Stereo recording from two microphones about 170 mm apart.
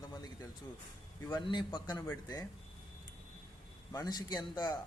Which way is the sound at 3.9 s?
25° left (ahead or behind).